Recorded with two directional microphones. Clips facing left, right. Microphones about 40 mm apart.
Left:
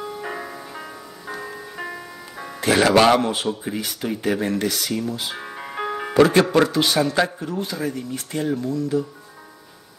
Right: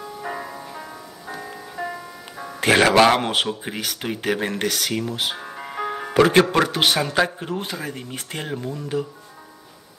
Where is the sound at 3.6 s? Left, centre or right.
Right.